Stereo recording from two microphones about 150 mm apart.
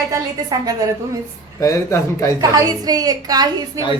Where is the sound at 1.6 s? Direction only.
20° left (ahead or behind).